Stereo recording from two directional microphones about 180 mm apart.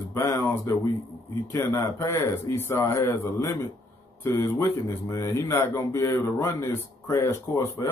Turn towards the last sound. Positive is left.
turn(degrees=15)  # may be behind; listen again after turning